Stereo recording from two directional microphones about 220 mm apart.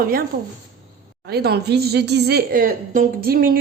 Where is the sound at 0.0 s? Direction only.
40° right (ahead or behind).